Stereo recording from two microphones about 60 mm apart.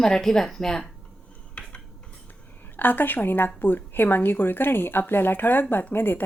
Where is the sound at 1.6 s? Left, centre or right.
Centre.